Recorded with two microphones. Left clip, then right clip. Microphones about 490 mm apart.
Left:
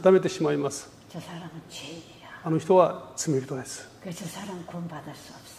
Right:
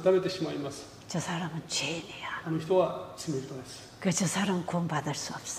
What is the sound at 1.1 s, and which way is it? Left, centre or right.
Speech, right.